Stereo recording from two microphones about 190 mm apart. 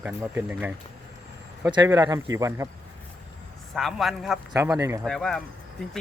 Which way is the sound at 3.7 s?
Centre (ahead or behind).